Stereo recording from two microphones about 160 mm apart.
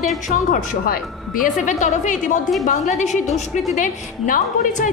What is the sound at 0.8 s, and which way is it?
A woman's voice, 65° left (ahead or behind).